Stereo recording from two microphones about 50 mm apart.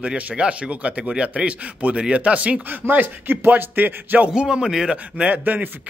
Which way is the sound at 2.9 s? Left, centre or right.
Right.